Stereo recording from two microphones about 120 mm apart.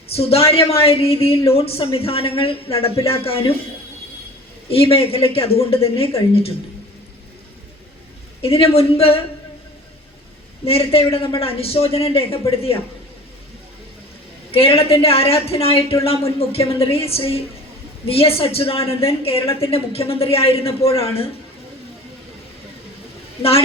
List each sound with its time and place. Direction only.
0.1 s a woman's voice: 55° left (ahead or behind)
4.7 s a woman's voice: 55° left (ahead or behind)
8.4 s a woman's voice: 55° left (ahead or behind)
10.7 s a woman's voice: 55° left (ahead or behind)
14.5 s a woman's voice: 55° left (ahead or behind)
23.4 s a woman's voice: 55° left (ahead or behind)